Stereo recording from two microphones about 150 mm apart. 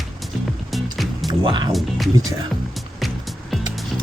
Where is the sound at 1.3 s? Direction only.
30° right (ahead or behind).